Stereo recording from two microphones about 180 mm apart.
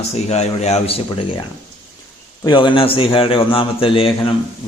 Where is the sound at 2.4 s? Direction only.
25° left (ahead or behind).